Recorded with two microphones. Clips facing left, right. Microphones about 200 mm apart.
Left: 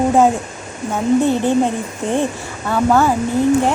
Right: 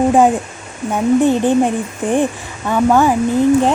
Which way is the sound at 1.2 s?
15° right (ahead or behind).